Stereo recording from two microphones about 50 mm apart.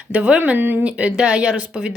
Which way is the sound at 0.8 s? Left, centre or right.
Right.